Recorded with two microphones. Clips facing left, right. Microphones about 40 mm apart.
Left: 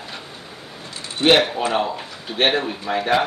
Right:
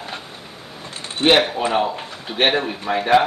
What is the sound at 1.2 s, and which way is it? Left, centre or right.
Speech, right.